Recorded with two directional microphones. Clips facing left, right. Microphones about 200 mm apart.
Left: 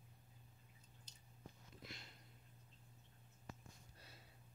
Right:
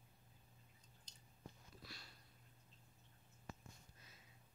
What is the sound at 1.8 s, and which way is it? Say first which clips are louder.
Sniff: left 2 dB; 20° left (ahead or behind).